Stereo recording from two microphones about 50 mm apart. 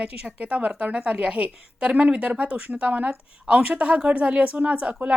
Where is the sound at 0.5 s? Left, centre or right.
Right.